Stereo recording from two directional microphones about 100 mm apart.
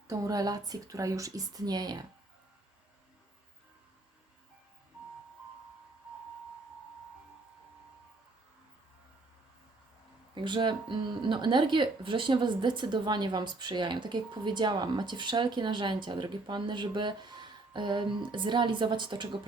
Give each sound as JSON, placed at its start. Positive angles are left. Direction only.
{"t": 0.1, "sound": "a woman's voice", "side_deg": -40}
{"t": 10.3, "sound": "speech", "side_deg": -50}